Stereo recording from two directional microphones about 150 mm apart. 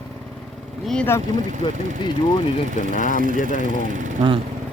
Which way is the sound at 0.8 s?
5° left (ahead or behind).